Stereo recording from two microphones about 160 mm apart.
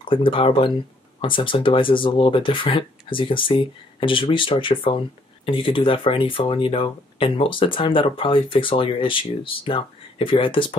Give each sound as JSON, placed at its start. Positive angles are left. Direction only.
{"t": 0.1, "sound": "speech", "side_deg": 35}